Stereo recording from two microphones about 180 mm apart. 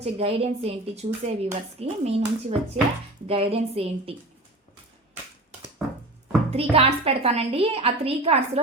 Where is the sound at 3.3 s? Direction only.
30° right (ahead or behind).